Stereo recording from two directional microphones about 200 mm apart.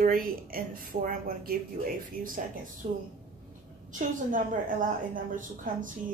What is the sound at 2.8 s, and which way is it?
Speech, 40° right (ahead or behind).